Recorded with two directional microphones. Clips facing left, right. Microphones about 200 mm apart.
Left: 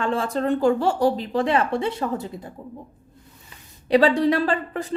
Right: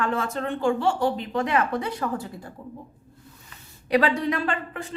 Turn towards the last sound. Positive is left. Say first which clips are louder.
# left 5 dB
turn(degrees=35)  # may be behind; listen again after turning